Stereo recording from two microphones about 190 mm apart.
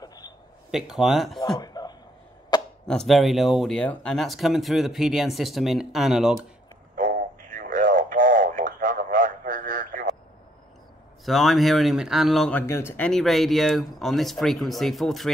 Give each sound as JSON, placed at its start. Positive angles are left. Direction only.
{"t": 0.0, "sound": "a sound", "side_deg": 20}
{"t": 0.7, "sound": "speech", "side_deg": 0}
{"t": 1.6, "sound": "a sound", "side_deg": 20}
{"t": 2.9, "sound": "speech", "side_deg": 0}
{"t": 7.0, "sound": "radio", "side_deg": -45}
{"t": 11.2, "sound": "speech", "side_deg": 0}